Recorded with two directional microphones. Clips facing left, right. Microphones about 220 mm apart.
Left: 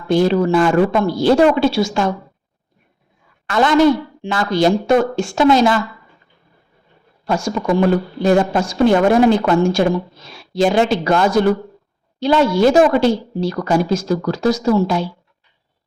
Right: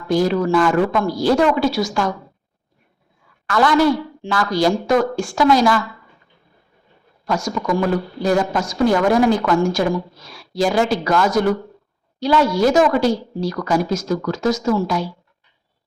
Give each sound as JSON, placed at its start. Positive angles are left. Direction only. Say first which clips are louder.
{"t": 0.1, "sound": "a woman's voice", "louder": "left 3 dB", "side_deg": 25}
{"t": 3.4, "sound": "a woman's voice", "louder": "left 3 dB", "side_deg": 25}
{"t": 7.3, "sound": "a woman's voice", "louder": "left 3 dB", "side_deg": 30}